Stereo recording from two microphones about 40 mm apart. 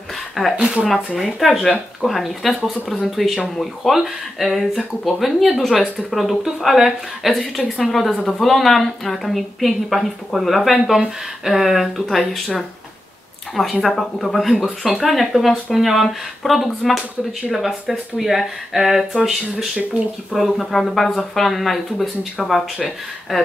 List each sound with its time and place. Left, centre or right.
0.6 s speech: right
0.8 s speech: centre